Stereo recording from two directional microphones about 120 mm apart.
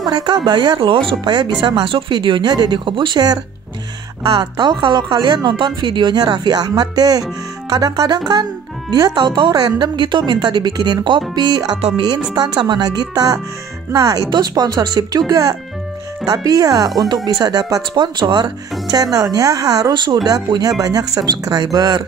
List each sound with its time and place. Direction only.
0.0 s speech: 35° right (ahead or behind)